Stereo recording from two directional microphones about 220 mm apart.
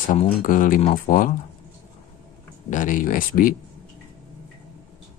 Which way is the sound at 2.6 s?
35° left (ahead or behind).